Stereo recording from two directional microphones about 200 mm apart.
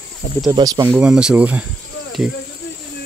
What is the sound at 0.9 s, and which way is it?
Speech, 5° right (ahead or behind).